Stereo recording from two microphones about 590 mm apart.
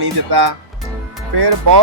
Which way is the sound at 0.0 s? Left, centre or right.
Right.